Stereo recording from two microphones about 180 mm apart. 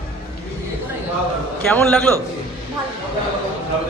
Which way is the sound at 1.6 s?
10° left (ahead or behind).